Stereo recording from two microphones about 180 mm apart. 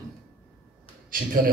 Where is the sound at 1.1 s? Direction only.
50° right (ahead or behind).